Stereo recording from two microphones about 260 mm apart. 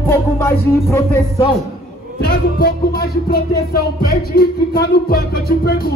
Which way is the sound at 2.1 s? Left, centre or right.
Left.